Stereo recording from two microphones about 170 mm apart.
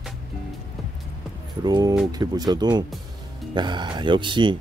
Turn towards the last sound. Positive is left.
turn(degrees=-30)  # may be behind; listen again after turning